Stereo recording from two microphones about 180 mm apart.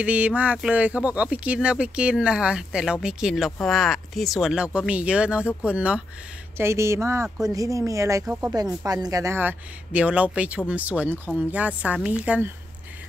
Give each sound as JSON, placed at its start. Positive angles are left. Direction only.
{"t": 0.0, "sound": "speech", "side_deg": -10}
{"t": 8.5, "sound": "speech", "side_deg": -20}